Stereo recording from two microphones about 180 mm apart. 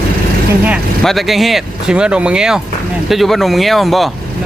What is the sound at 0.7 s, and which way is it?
Speech, centre (ahead or behind).